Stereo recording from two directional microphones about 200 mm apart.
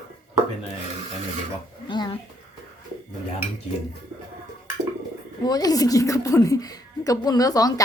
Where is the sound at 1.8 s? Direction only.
25° left (ahead or behind).